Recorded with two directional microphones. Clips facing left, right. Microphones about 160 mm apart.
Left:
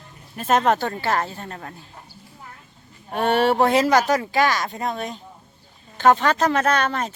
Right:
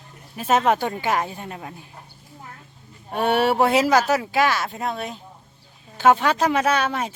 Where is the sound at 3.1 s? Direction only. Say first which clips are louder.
Left 1 dB; 10° right (ahead or behind).